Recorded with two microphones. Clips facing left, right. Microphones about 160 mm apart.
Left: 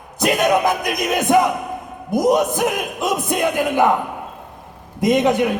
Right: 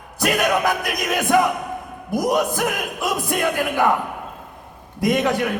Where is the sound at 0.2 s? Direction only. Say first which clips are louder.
Left 3 dB; 20° left (ahead or behind).